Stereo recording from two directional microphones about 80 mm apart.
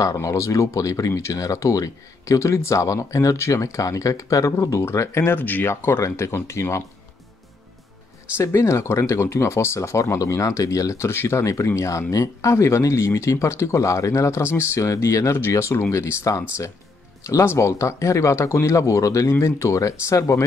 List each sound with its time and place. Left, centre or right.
0.0 s speech: left
8.4 s speech: left